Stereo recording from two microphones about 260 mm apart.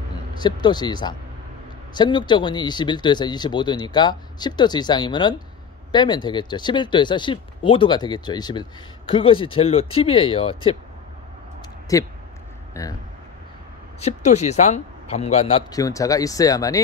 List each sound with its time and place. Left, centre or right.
0.4 s speech: centre
11.9 s speech: centre
13.9 s a man's voice: left